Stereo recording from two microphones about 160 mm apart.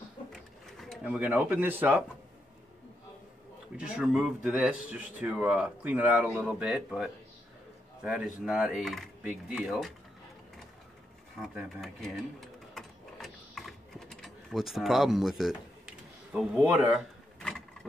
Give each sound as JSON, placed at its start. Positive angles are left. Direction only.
{"t": 0.3, "sound": "a sound", "side_deg": 0}
{"t": 3.7, "sound": "speech", "side_deg": -5}
{"t": 11.4, "sound": "sewing machine", "side_deg": 0}
{"t": 16.3, "sound": "speech", "side_deg": -10}
{"t": 17.4, "sound": "vehicle", "side_deg": 5}